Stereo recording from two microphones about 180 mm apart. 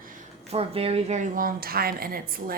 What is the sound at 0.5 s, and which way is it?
A woman's voice, 35° right (ahead or behind).